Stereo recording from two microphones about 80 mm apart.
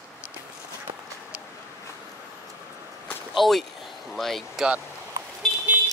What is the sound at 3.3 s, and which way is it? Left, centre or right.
Speech, centre.